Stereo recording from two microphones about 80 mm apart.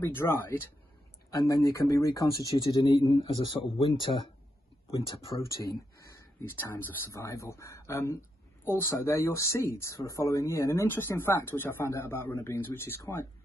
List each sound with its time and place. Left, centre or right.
0.0 s speech: left
1.4 s speech: left
4.9 s speech: left
6.5 s speech: left
7.1 s speech: left